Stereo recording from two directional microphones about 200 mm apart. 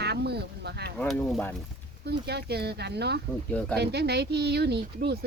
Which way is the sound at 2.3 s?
55° right (ahead or behind).